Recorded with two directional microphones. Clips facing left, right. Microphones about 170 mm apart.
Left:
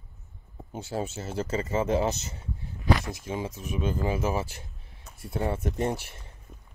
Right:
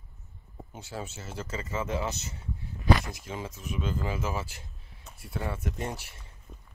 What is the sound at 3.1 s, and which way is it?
Speech, 20° left (ahead or behind).